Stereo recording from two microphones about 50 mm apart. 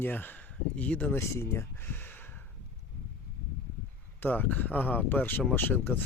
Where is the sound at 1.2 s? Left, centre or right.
Left.